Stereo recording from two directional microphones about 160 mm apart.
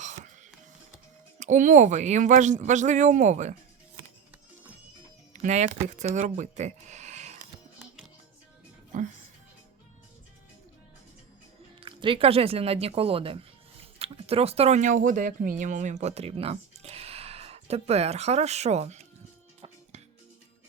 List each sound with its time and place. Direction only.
0.0 s music: 50° right (ahead or behind)
1.4 s speech: 50° right (ahead or behind)
5.3 s speech: 50° right (ahead or behind)
8.9 s music: 55° right (ahead or behind)
11.8 s speech: 30° right (ahead or behind)